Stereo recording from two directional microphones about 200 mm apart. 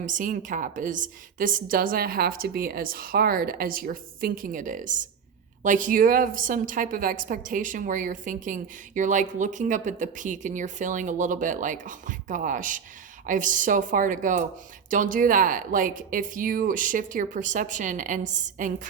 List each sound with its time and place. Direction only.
0.0 s a woman's voice: 40° right (ahead or behind)